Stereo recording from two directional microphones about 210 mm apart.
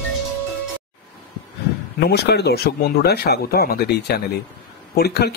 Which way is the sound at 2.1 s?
50° left (ahead or behind).